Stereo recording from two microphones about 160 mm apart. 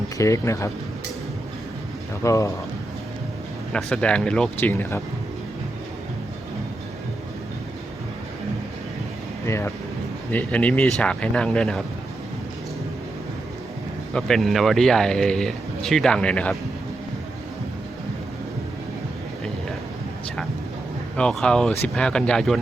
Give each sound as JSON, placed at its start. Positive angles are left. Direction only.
{"t": 0.2, "sound": "speech", "side_deg": 20}
{"t": 2.2, "sound": "speech", "side_deg": 20}
{"t": 3.7, "sound": "speech", "side_deg": 5}
{"t": 9.5, "sound": "speech", "side_deg": 15}
{"t": 14.1, "sound": "speech", "side_deg": 0}
{"t": 21.2, "sound": "speech", "side_deg": 5}